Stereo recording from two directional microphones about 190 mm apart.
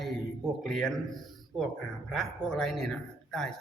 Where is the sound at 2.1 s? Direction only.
Centre (ahead or behind).